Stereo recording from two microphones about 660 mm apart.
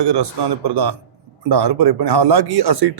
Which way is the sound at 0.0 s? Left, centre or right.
Right.